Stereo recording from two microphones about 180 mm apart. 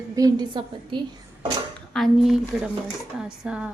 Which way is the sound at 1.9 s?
Centre (ahead or behind).